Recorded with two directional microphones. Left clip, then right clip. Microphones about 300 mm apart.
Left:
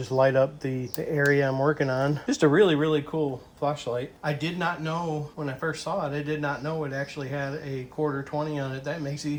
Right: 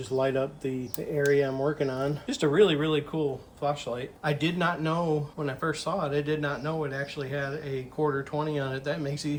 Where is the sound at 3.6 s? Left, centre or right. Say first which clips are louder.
Left 2 dB; centre.